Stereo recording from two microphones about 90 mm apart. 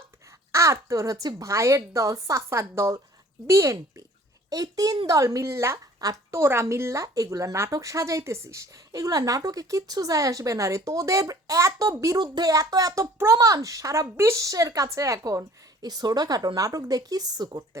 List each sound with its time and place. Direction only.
0.5 s a woman's voice: 35° right (ahead or behind)
12.2 s a woman's voice: 50° right (ahead or behind)